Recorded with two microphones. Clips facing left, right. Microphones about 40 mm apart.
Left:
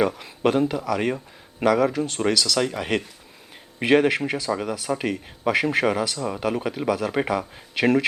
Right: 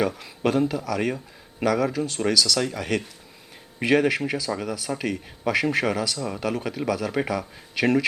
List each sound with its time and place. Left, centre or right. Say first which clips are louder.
0.0 s speech: left 3 dB; centre